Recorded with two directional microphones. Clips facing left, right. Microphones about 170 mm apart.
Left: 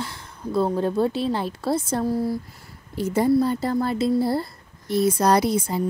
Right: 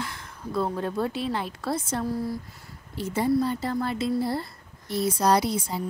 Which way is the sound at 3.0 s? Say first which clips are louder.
Left 5 dB; 45° left (ahead or behind).